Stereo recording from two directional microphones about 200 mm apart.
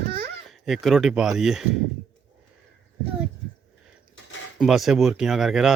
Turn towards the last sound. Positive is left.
turn(degrees=0)  # may be behind; listen again after turning